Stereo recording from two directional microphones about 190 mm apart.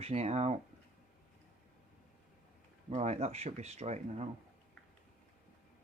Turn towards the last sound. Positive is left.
turn(degrees=-35)  # may be behind; listen again after turning